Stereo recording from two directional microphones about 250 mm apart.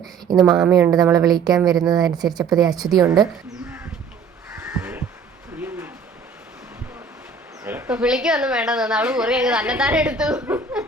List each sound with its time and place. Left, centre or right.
0.3 s speech: centre
4.5 s crow: centre
5.5 s bird: centre
7.6 s a woman's voice: centre